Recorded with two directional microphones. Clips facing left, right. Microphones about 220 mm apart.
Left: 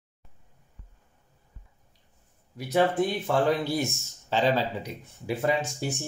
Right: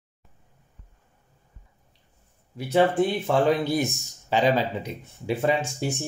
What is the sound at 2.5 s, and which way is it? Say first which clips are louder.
Speech: right 3 dB; 30° right (ahead or behind).